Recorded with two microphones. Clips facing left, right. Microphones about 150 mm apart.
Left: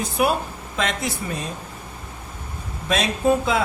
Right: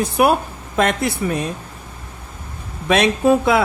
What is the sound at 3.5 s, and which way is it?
Speech, 70° right (ahead or behind).